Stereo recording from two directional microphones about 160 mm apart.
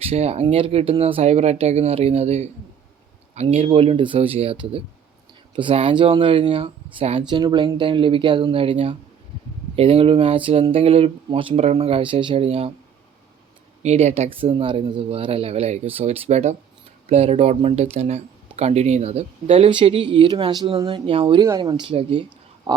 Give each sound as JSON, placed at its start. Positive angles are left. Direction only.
{"t": 0.0, "sound": "speech", "side_deg": -40}
{"t": 7.3, "sound": "speech", "side_deg": -30}
{"t": 13.8, "sound": "speech", "side_deg": -45}
{"t": 21.4, "sound": "speech", "side_deg": -25}